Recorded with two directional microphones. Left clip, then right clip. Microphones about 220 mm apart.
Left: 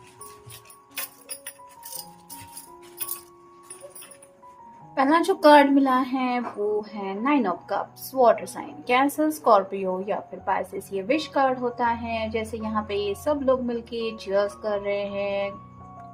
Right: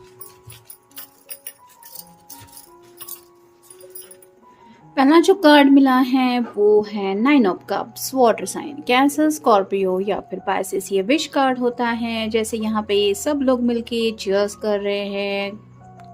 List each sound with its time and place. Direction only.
4.9 s a woman's voice: 35° right (ahead or behind)